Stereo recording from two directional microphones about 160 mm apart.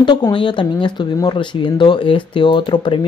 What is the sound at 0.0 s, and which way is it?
Speech, 25° left (ahead or behind).